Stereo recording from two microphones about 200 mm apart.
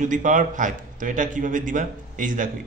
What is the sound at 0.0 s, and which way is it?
Speech, 40° right (ahead or behind).